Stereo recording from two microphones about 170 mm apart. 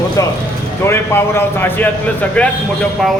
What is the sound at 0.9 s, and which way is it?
A man's voice, 15° left (ahead or behind).